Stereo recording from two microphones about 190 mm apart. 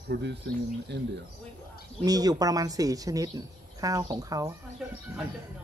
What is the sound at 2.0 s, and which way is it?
A woman's voice, 20° right (ahead or behind).